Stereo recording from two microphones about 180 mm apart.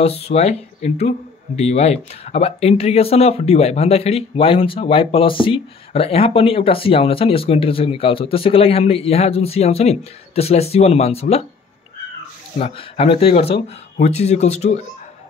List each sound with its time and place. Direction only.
0.0 s speech: 35° left (ahead or behind)
12.5 s speech: 35° left (ahead or behind)